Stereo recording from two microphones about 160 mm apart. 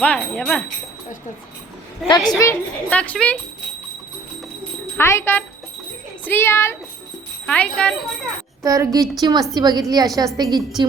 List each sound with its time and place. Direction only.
0.0 s a child's voice: 10° left (ahead or behind)
2.0 s a woman's voice: 25° left (ahead or behind)
2.4 s a child's voice: 10° left (ahead or behind)
4.9 s a child's voice: 15° left (ahead or behind)
8.6 s a woman's voice: 20° right (ahead or behind)